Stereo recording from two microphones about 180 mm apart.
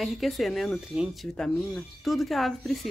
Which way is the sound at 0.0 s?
Centre (ahead or behind).